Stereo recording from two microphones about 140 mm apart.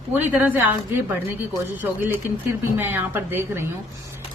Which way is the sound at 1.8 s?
15° right (ahead or behind).